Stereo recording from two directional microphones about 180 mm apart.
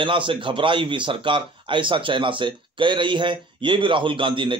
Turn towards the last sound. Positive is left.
turn(degrees=-30)  # may be behind; listen again after turning